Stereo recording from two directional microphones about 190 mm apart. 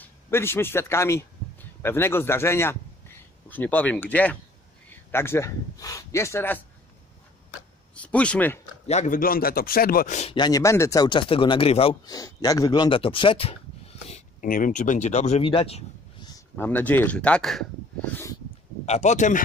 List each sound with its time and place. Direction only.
0.0 s a man's voice: 10° left (ahead or behind)
7.9 s speech: 5° left (ahead or behind)
8.8 s speech: 35° left (ahead or behind)
10.3 s speech: 20° left (ahead or behind)
14.0 s speech: 40° left (ahead or behind); by 17.6 s centre (ahead or behind)
18.1 s a sound: 15° left (ahead or behind)
18.9 s speech: 35° left (ahead or behind)